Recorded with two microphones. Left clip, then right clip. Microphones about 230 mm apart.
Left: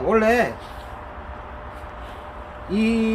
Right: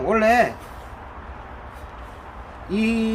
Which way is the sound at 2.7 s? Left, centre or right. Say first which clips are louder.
Left 1 dB; centre.